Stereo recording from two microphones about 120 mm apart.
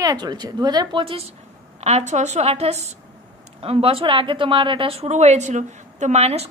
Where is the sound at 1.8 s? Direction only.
65° right (ahead or behind).